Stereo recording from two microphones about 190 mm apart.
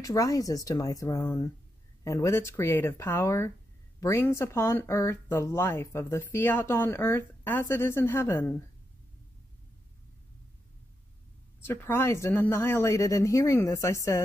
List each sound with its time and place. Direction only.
0.0 s speech: 20° left (ahead or behind)
11.6 s speech: 10° left (ahead or behind)